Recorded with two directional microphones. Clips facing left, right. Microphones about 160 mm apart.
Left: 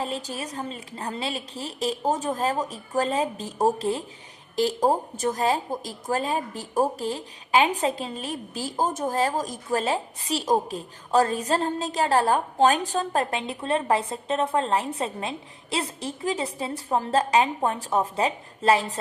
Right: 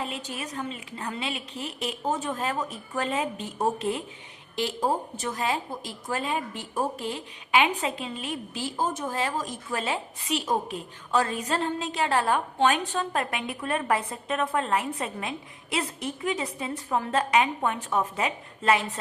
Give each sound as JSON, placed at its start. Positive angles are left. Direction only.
{"t": 0.0, "sound": "a woman's voice", "side_deg": 35}